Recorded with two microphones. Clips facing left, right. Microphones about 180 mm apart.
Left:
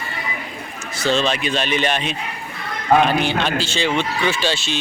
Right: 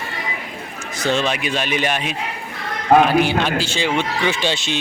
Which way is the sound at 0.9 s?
15° right (ahead or behind).